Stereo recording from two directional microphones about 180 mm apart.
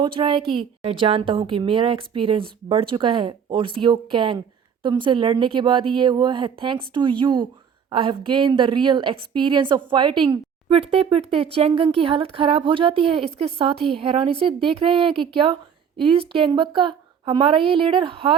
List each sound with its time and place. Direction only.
0.0 s a woman's voice: 30° right (ahead or behind)